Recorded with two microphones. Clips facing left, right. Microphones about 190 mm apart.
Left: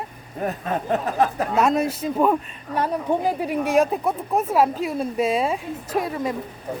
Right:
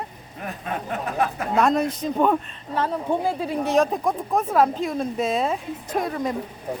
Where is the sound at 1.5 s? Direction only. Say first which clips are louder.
Even; 5° left (ahead or behind).